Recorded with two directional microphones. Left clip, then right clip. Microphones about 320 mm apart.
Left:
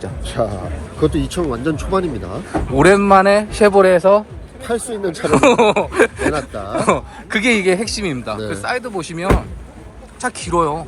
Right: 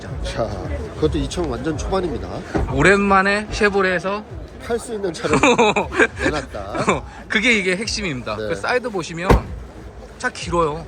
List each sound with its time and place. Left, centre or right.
0.4 s speech: left
2.7 s speech: centre
4.6 s speech: left
5.3 s a sound: centre
6.8 s speech: centre
8.6 s a sound: centre
10.2 s speech: centre